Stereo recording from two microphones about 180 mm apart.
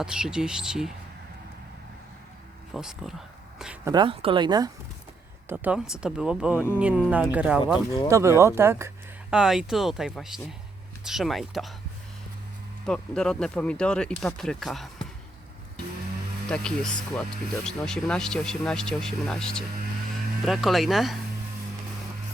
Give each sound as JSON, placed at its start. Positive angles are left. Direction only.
{"t": 0.0, "sound": "speech", "side_deg": -5}
{"t": 2.7, "sound": "speech", "side_deg": 0}
{"t": 3.8, "sound": "speech", "side_deg": -25}
{"t": 5.5, "sound": "speech", "side_deg": -5}
{"t": 12.8, "sound": "speech", "side_deg": 5}
{"t": 16.5, "sound": "speech", "side_deg": 5}